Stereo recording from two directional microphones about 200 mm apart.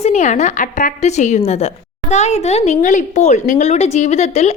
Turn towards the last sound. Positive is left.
turn(degrees=35)  # may be behind; listen again after turning